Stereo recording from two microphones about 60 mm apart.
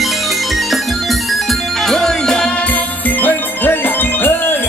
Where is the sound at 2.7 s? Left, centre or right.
Left.